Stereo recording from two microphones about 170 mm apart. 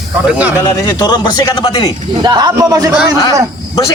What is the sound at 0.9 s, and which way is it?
Speech, 25° left (ahead or behind).